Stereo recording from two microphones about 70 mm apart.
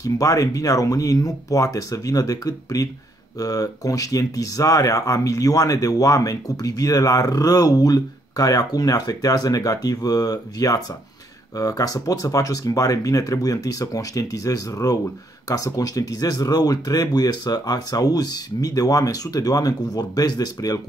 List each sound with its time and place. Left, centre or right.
0.0 s speech: left